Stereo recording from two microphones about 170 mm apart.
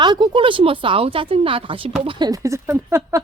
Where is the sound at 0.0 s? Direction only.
30° right (ahead or behind).